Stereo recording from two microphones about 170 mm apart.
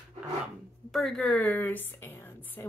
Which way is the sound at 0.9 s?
Centre (ahead or behind).